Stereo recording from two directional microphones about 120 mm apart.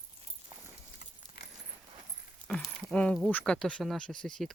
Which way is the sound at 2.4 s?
5° left (ahead or behind).